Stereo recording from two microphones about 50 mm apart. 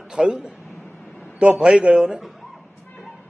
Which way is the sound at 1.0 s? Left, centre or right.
Left.